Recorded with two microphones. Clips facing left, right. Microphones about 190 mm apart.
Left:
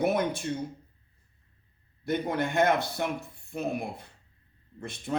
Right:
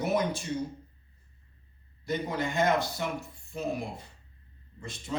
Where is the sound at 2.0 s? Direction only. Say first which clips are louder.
Left 3 dB; 60° left (ahead or behind).